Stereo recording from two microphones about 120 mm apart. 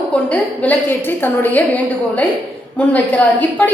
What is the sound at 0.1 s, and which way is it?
A woman's voice, 10° left (ahead or behind).